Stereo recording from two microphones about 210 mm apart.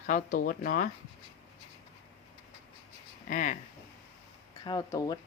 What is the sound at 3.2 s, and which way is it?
Speech, 35° left (ahead or behind).